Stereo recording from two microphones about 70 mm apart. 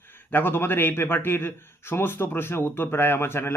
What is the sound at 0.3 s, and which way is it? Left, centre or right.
A man's voice, left.